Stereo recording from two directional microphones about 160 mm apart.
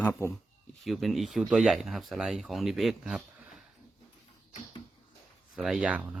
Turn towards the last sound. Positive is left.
turn(degrees=-10)  # may be behind; listen again after turning